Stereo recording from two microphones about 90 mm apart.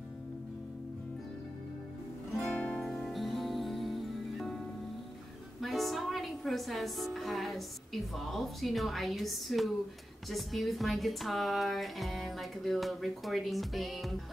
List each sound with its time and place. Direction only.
2.3 s music: 10° left (ahead or behind)
5.6 s a woman's voice: centre (ahead or behind)